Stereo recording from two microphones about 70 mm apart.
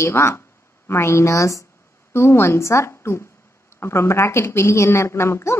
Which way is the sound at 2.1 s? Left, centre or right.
Left.